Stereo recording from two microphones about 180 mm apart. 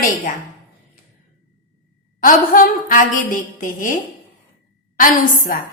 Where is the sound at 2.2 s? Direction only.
50° left (ahead or behind).